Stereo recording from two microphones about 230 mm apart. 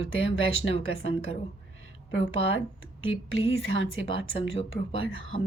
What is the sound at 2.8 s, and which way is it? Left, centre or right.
A woman's voice, left.